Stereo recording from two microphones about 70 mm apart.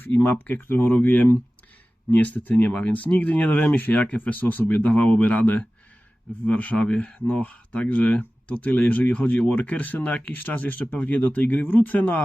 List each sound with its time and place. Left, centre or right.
0.0 s speech: left